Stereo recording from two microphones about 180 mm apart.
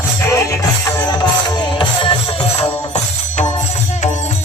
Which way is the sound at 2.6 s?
40° left (ahead or behind).